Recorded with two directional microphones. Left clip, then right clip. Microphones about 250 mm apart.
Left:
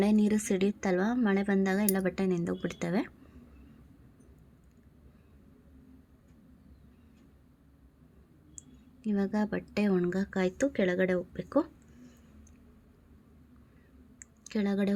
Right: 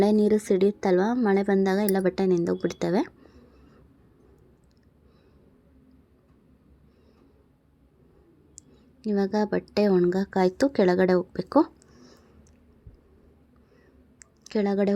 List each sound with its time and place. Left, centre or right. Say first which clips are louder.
0.0 s a woman's voice: right 8 dB; centre
9.0 s speech: right 7 dB; centre
14.2 s a sound: right 8 dB; centre